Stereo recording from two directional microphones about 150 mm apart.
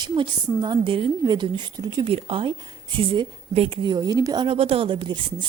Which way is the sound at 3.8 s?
25° right (ahead or behind).